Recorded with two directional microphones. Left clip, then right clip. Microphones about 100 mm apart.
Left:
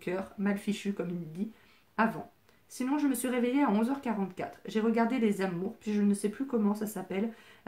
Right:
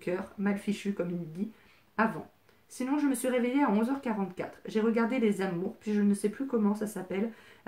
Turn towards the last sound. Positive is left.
turn(degrees=20)  # may be behind; listen again after turning